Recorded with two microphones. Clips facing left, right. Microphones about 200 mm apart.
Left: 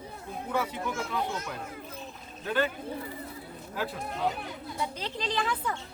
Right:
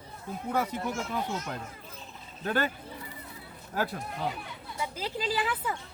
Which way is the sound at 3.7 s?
45° right (ahead or behind).